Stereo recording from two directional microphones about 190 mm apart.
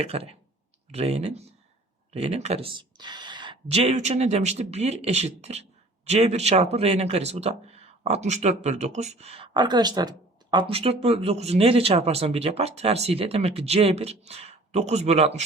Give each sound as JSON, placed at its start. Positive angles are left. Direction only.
{"t": 0.0, "sound": "speech", "side_deg": -30}